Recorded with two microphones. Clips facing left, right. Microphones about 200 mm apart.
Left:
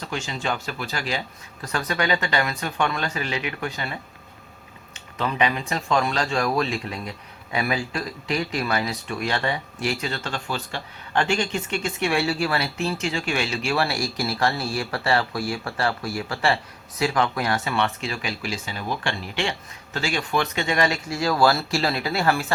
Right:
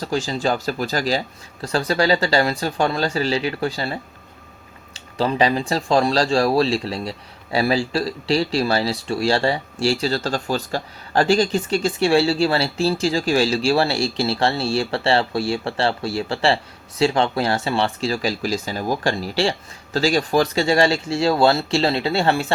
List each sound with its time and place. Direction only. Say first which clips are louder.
0.0 s speech: right 7 dB; 35° right (ahead or behind)